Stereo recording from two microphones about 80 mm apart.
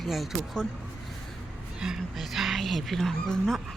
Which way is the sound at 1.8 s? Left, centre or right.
Centre.